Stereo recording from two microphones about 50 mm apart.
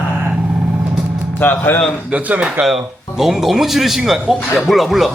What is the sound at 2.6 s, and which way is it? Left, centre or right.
A man's voice, centre.